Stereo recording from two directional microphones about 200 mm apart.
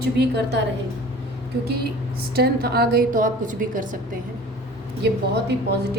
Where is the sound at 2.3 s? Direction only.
50° right (ahead or behind).